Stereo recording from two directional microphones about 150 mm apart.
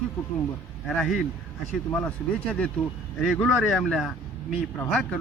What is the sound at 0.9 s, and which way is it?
Speech, centre (ahead or behind).